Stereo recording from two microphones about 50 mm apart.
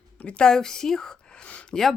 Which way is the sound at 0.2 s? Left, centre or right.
Left.